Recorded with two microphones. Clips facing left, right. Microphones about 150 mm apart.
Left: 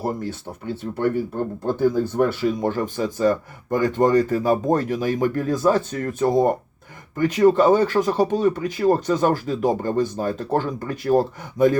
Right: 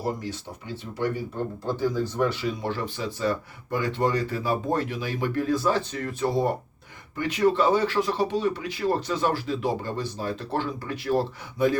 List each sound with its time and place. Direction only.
0.0 s speech: 50° left (ahead or behind)